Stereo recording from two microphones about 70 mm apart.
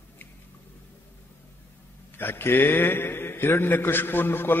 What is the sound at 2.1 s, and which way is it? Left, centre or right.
A man's voice, left.